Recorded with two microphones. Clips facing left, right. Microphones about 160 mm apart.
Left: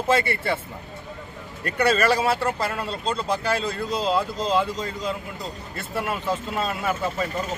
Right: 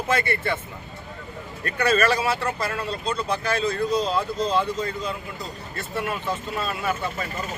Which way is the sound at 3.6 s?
30° left (ahead or behind).